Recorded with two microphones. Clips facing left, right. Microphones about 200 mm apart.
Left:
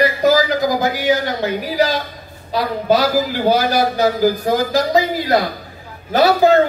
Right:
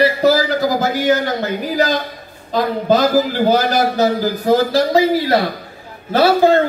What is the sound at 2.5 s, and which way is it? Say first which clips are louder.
A man's voice: right 1 dB; 10° left (ahead or behind).